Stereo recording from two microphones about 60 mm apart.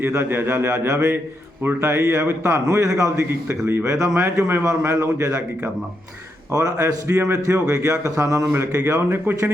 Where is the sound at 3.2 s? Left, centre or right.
Right.